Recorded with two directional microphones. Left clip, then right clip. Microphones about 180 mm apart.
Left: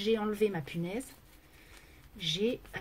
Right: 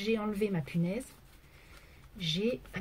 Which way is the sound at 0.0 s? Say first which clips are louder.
Left 3 dB; 30° left (ahead or behind).